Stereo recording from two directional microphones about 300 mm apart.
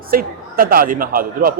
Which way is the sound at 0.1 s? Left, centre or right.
Right.